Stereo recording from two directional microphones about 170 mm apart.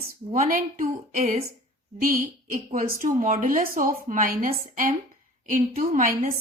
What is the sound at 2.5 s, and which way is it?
A woman's voice, 55° right (ahead or behind).